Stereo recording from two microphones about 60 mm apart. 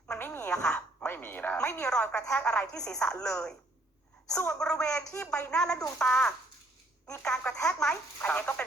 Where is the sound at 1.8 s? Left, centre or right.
Centre.